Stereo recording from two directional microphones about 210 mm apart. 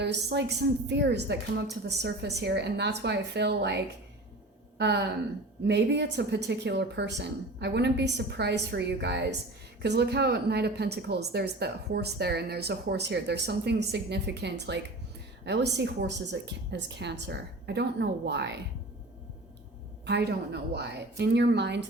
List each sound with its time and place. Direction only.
0.0 s a woman's voice: 55° right (ahead or behind)
20.1 s speech: 50° right (ahead or behind)